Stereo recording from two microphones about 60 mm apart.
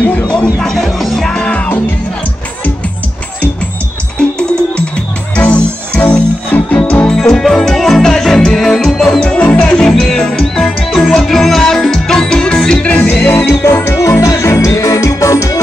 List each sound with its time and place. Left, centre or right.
0.0 s music: centre
0.6 s music: centre
4.2 s music: centre
7.1 s music: centre
9.4 s music: left
9.8 s music: centre
13.2 s music: left
14.8 s music: left